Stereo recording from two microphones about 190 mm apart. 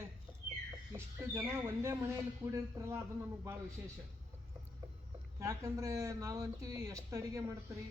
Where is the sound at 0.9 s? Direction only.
15° right (ahead or behind).